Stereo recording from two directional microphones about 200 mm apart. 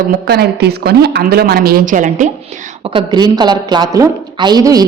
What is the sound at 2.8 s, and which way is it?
A woman's voice, 25° right (ahead or behind).